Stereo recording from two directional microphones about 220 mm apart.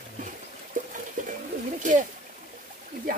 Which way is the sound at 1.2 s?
35° right (ahead or behind).